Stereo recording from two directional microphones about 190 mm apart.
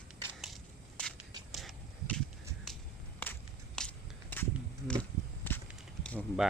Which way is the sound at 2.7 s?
Centre (ahead or behind).